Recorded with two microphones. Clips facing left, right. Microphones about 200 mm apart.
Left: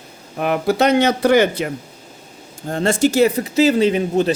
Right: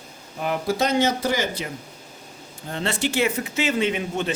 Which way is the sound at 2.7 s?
45° left (ahead or behind).